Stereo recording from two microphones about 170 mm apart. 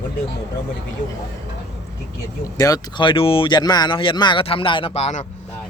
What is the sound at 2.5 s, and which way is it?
Speech, 20° left (ahead or behind).